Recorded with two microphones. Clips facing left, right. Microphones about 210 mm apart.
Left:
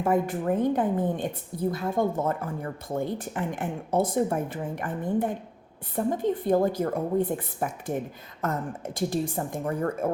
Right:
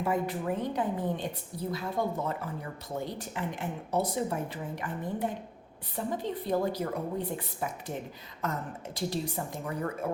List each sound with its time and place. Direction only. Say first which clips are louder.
0.0 s a woman's voice: left 5 dB; 50° left (ahead or behind)